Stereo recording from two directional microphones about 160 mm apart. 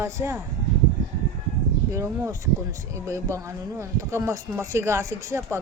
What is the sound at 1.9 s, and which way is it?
Speech, 15° right (ahead or behind).